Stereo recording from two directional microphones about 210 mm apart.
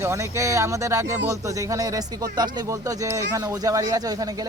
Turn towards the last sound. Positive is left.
turn(degrees=-20)  # may be behind; listen again after turning